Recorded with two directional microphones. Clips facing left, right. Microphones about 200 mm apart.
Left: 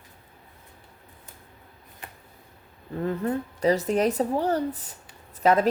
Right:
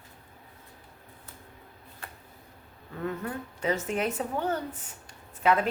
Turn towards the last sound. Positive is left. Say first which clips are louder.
# left 4 dB
turn(degrees=40)  # may be behind; listen again after turning